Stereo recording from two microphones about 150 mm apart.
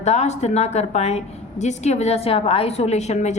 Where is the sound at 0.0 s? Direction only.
45° left (ahead or behind).